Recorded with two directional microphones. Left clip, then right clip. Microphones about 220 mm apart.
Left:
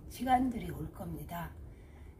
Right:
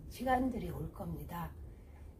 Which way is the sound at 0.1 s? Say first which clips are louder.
Left 4 dB; 15° left (ahead or behind).